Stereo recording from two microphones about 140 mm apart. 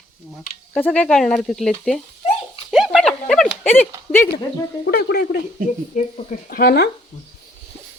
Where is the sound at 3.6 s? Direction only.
15° left (ahead or behind).